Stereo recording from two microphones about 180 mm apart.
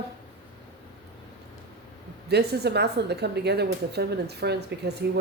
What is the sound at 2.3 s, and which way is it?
A woman's voice, 65° right (ahead or behind).